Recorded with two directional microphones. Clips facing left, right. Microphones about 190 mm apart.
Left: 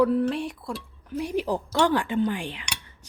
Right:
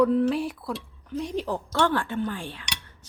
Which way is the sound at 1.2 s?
15° left (ahead or behind).